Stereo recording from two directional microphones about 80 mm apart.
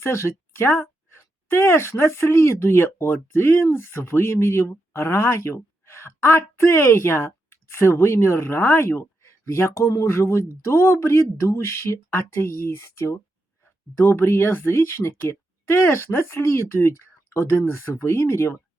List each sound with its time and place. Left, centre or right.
0.0 s speech: left